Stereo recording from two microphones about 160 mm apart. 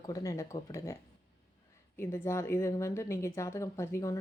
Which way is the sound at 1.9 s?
15° left (ahead or behind).